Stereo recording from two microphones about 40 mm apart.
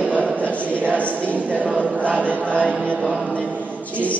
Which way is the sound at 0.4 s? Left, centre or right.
Left.